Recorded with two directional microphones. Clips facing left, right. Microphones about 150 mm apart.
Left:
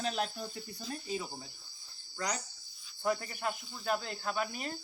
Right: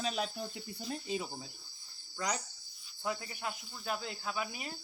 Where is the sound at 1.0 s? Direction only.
20° right (ahead or behind).